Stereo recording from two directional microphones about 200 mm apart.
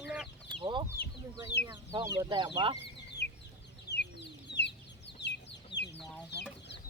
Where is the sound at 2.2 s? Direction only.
20° right (ahead or behind).